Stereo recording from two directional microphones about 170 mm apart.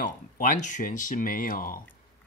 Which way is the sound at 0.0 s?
50° left (ahead or behind).